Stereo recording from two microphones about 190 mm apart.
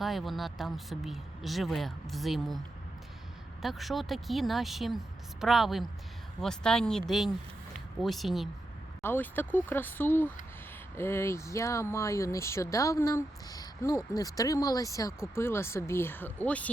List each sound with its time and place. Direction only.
0.0 s speech: centre (ahead or behind)
3.6 s speech: centre (ahead or behind)
8.0 s speech: centre (ahead or behind)
9.0 s speech: 10° left (ahead or behind)